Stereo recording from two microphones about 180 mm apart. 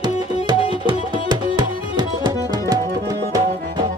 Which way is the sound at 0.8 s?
25° right (ahead or behind).